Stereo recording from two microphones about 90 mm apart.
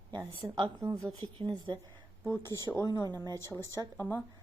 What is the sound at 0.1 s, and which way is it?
Speech, 55° right (ahead or behind).